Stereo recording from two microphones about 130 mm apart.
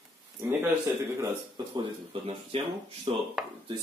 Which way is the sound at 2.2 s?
40° right (ahead or behind).